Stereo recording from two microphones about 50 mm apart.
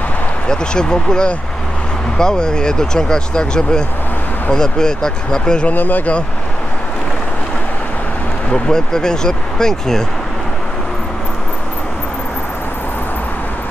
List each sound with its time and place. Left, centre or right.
0.5 s speech: centre
5.7 s speech: left
8.5 s speech: centre